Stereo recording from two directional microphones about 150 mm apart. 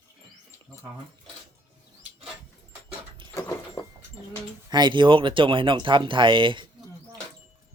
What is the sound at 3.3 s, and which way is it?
Vehicle, 20° left (ahead or behind).